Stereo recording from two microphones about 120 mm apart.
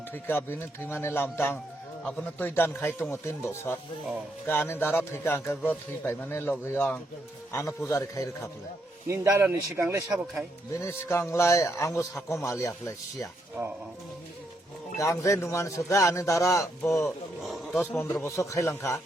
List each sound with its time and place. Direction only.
0.1 s a man's voice: 20° left (ahead or behind)
9.0 s speech: 25° right (ahead or behind)
10.8 s a man's voice: 25° left (ahead or behind)
13.6 s speech: 30° right (ahead or behind)
14.9 s a man's voice: 25° left (ahead or behind)
17.0 s wild animals: centre (ahead or behind)
17.7 s a man's voice: 20° left (ahead or behind)